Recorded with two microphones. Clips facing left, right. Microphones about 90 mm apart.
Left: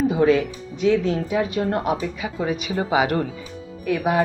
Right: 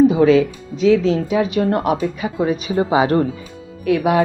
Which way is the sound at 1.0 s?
90° right.